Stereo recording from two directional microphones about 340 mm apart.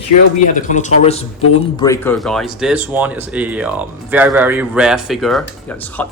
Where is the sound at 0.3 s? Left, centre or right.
Left.